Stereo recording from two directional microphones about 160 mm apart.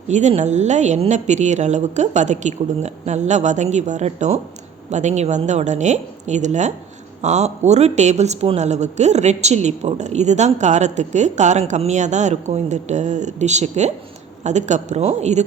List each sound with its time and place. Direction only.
0.1 s speech: 45° right (ahead or behind)